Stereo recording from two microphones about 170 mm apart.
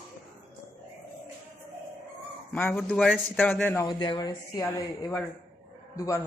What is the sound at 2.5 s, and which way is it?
Speech, 5° left (ahead or behind).